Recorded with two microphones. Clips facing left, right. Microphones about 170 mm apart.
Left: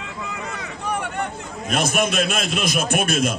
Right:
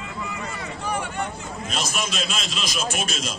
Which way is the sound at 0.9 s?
60° left (ahead or behind).